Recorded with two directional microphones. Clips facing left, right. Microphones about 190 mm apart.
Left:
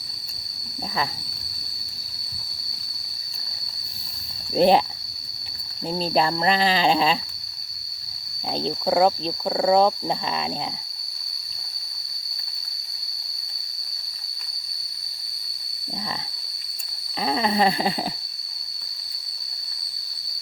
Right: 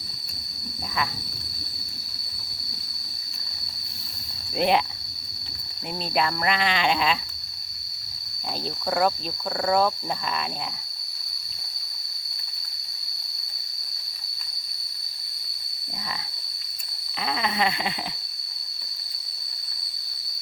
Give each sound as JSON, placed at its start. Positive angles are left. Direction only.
{"t": 4.5, "sound": "cricket", "side_deg": 35}
{"t": 5.9, "sound": "cricket", "side_deg": 30}
{"t": 8.4, "sound": "speech", "side_deg": 25}
{"t": 17.2, "sound": "a sound", "side_deg": 35}